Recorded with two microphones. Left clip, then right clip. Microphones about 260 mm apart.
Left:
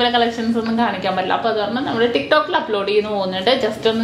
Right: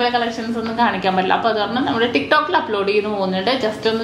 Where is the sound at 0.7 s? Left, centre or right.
Left.